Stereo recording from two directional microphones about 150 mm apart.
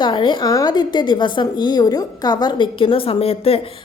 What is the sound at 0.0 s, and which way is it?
A woman's voice, 30° left (ahead or behind).